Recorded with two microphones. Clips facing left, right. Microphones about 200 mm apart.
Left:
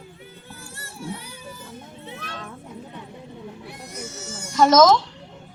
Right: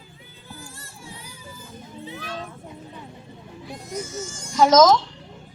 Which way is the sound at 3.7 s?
65° left (ahead or behind).